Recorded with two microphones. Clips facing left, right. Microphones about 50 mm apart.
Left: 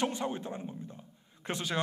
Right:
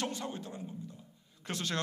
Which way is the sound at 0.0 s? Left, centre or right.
Left.